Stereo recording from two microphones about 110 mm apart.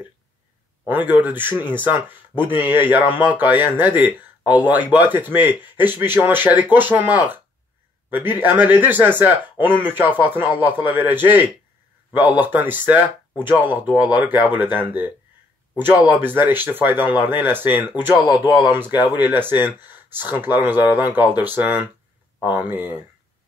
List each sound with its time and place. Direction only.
0.8 s speech: 15° right (ahead or behind)